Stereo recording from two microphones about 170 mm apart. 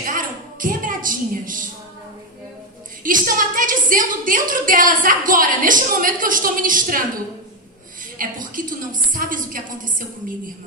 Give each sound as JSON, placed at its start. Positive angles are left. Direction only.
{"t": 0.0, "sound": "a sound", "side_deg": -50}
{"t": 3.0, "sound": "a woman's voice", "side_deg": -55}
{"t": 8.2, "sound": "a woman's voice", "side_deg": -55}